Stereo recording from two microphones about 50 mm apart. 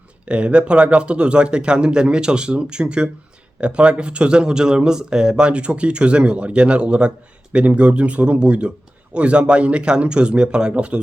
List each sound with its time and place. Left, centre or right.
0.3 s speech: right